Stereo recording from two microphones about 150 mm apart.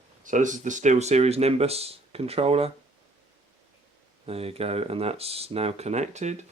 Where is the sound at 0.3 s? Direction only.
55° right (ahead or behind); by 2.7 s 40° right (ahead or behind).